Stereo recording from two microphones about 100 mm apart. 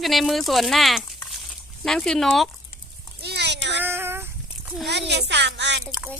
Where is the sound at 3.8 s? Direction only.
20° right (ahead or behind).